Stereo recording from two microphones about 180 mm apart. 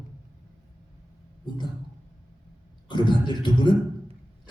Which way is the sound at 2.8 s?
25° left (ahead or behind).